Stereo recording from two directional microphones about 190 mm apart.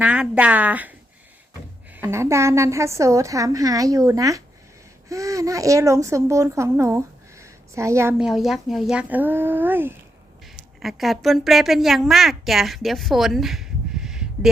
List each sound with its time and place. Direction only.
0.0 s a woman's voice: 5° right (ahead or behind)
8.2 s a woman's voice: centre (ahead or behind)
10.8 s a woman's voice: centre (ahead or behind)